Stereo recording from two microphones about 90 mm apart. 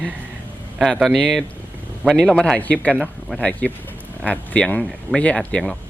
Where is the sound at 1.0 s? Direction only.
5° left (ahead or behind).